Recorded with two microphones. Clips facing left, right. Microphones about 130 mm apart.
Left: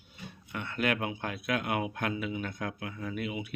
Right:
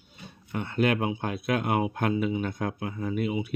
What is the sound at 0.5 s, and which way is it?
Speech, 30° right (ahead or behind).